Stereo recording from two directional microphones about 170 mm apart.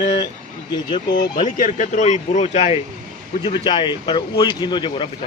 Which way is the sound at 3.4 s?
30° left (ahead or behind).